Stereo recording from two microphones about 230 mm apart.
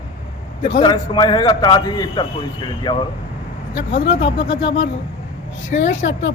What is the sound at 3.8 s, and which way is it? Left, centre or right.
Speech, left.